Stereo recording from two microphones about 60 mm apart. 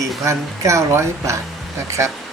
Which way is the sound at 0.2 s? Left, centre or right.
Right.